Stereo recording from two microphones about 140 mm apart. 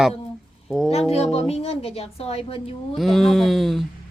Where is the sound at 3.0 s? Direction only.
Centre (ahead or behind).